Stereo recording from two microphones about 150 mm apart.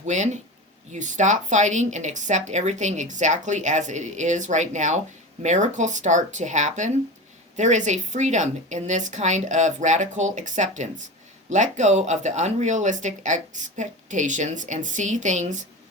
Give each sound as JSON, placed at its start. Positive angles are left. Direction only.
{"t": 0.0, "sound": "speech", "side_deg": -50}